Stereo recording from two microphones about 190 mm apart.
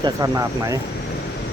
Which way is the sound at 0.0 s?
15° right (ahead or behind).